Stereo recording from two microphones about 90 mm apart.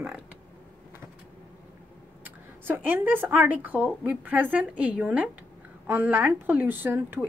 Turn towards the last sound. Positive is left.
turn(degrees=-20)  # may be behind; listen again after turning